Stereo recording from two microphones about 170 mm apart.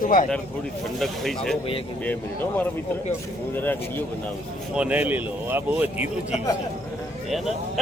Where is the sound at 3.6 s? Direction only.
10° left (ahead or behind).